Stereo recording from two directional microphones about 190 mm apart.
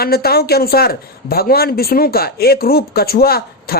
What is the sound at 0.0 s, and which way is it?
A man's voice, 55° left (ahead or behind).